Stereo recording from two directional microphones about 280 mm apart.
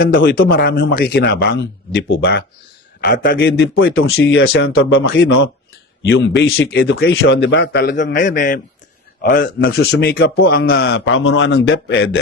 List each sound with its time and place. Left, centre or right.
0.0 s a man's voice: left